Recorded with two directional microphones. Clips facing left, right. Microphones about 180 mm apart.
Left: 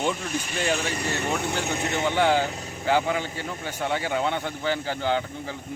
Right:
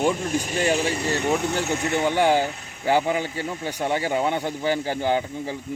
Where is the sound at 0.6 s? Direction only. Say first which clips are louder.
Right 3 dB; 15° right (ahead or behind).